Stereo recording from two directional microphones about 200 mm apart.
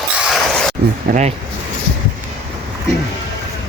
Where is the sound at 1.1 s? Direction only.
35° right (ahead or behind).